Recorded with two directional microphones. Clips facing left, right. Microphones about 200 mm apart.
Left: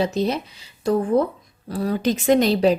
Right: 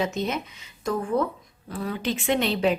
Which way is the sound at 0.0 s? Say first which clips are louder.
Left 5 dB; 35° left (ahead or behind).